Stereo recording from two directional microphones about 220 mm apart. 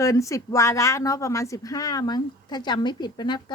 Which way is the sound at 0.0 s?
15° left (ahead or behind).